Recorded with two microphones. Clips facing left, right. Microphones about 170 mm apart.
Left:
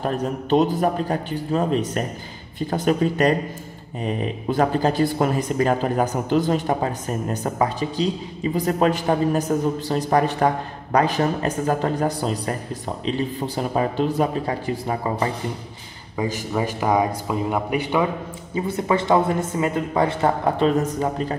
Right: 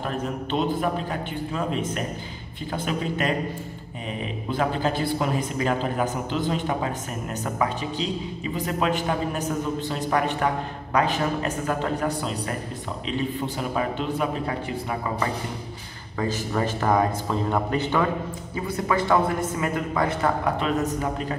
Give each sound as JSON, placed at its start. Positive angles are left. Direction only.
{"t": 0.0, "sound": "speech", "side_deg": 40}
{"t": 4.5, "sound": "speech", "side_deg": 40}
{"t": 16.2, "sound": "a man's voice", "side_deg": 15}